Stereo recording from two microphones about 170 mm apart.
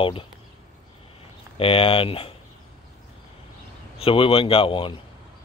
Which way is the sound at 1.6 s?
35° left (ahead or behind).